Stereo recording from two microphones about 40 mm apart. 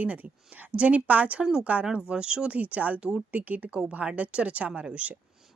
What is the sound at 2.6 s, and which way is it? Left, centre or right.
A woman's voice, right.